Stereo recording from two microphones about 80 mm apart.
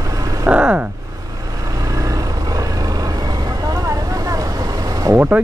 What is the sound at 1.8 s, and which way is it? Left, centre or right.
Vehicle, right.